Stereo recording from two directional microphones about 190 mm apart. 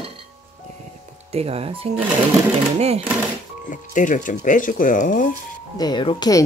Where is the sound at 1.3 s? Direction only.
30° right (ahead or behind).